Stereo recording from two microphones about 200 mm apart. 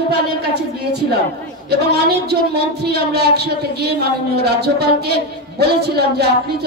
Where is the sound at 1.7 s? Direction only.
55° right (ahead or behind).